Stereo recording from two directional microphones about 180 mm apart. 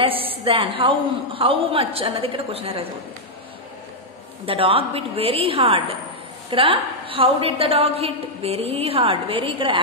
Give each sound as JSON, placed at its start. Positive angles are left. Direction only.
{"t": 0.0, "sound": "a woman's voice", "side_deg": -30}
{"t": 4.5, "sound": "a woman's voice", "side_deg": -30}